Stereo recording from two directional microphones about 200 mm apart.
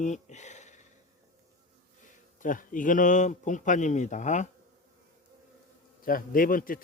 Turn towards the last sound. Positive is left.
turn(degrees=45)  # may be behind; listen again after turning